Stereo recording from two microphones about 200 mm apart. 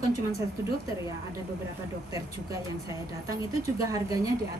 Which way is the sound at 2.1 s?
15° right (ahead or behind).